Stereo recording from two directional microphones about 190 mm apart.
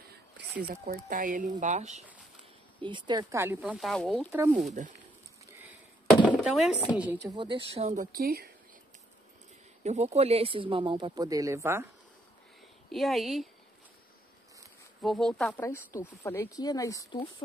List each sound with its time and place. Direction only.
0.8 s speech: 45° right (ahead or behind)
2.8 s speech: 25° right (ahead or behind); by 4.3 s 5° left (ahead or behind)
4.3 s speech: 10° right (ahead or behind)
4.6 s speech: 40° right (ahead or behind)
5.5 s chop: 10° right (ahead or behind)
6.3 s chopping: centre (ahead or behind)
6.9 s speech: 10° right (ahead or behind); by 8.5 s 55° right (ahead or behind)
9.8 s speech: 35° right (ahead or behind); by 11.9 s 15° right (ahead or behind)
12.9 s speech: centre (ahead or behind)
15.0 s speech: centre (ahead or behind)
15.6 s speech: 15° left (ahead or behind)